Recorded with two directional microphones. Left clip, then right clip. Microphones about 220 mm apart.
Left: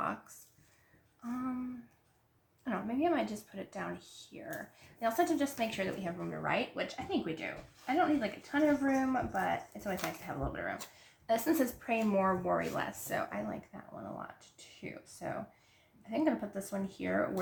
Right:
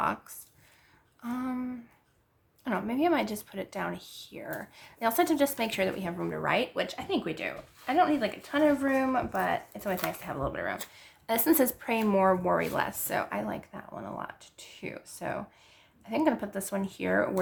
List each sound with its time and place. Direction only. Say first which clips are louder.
1.2 s speech: right 5 dB; 40° right (ahead or behind)
2.6 s speech: right 5 dB; 40° right (ahead or behind)